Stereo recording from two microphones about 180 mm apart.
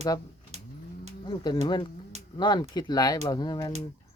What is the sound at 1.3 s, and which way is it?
Speech, 25° left (ahead or behind).